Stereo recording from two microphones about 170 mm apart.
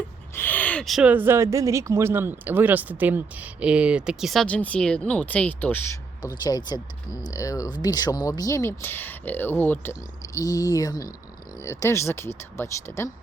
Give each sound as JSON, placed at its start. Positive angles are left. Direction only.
{"t": 0.3, "sound": "speech", "side_deg": 10}